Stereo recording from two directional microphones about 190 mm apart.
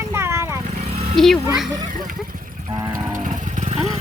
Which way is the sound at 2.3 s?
45° right (ahead or behind).